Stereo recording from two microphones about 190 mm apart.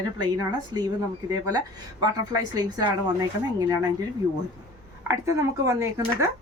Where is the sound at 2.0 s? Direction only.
20° right (ahead or behind).